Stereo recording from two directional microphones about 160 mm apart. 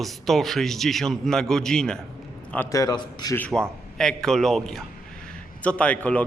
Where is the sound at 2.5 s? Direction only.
15° left (ahead or behind).